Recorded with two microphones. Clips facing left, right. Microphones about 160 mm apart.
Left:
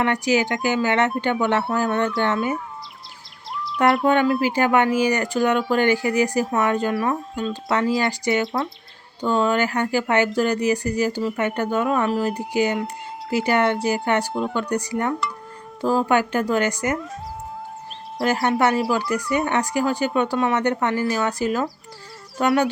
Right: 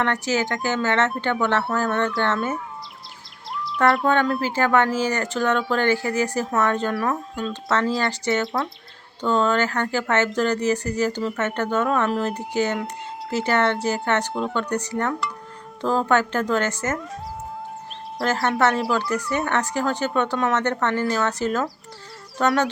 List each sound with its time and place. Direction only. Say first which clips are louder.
0.0 s speech: left 3 dB; 15° left (ahead or behind)
3.5 s bird vocalization: even; centre (ahead or behind)
4.0 s speech: left 3 dB; 10° left (ahead or behind)
7.7 s speech: left 1 dB; 15° left (ahead or behind)
18.3 s speech: left 1 dB; 15° left (ahead or behind)